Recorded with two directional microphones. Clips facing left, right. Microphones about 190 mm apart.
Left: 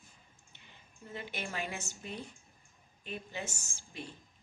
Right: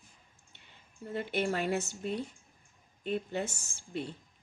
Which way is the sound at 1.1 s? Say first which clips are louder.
Right 9 dB; 55° right (ahead or behind).